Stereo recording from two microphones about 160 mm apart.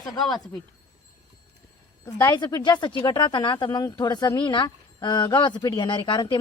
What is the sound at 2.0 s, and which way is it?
Speech, 25° left (ahead or behind).